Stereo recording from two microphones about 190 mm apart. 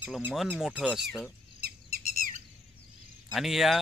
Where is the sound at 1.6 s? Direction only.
50° right (ahead or behind).